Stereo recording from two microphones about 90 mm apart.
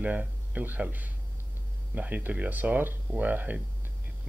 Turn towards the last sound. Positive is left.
turn(degrees=-20)  # may be behind; listen again after turning